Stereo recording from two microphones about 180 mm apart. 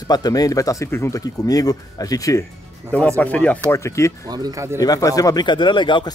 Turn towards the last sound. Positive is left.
turn(degrees=25)  # may be behind; listen again after turning